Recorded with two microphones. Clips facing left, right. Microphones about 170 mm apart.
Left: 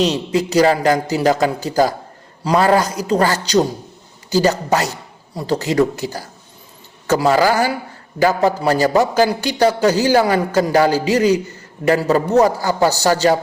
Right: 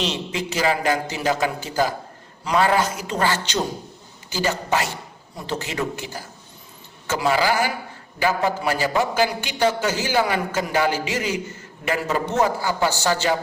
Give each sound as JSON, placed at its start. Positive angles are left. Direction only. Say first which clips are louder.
{"t": 0.0, "sound": "a man's voice", "louder": "left 9 dB", "side_deg": 40}